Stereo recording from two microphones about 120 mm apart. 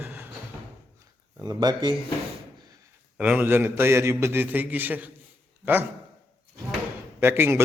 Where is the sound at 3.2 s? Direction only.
15° right (ahead or behind).